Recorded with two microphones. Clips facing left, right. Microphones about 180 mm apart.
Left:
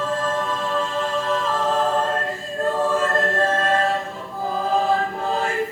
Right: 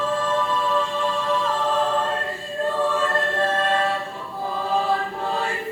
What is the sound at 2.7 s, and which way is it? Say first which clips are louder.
Choir: left 2 dB; 45° left (ahead or behind).